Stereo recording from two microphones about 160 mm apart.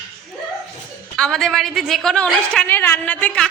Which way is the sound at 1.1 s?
5° left (ahead or behind).